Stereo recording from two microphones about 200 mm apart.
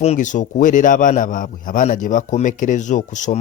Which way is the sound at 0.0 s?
35° left (ahead or behind).